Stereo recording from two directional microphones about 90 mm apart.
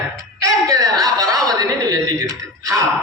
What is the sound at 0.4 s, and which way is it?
Chuckle, 40° right (ahead or behind).